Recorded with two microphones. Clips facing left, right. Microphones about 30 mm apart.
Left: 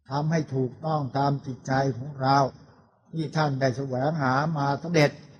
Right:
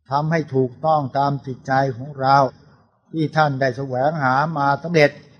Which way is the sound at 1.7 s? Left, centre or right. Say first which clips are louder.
Right 6 dB; right.